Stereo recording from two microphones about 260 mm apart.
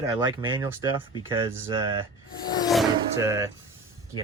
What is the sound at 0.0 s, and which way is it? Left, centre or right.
Speech, centre.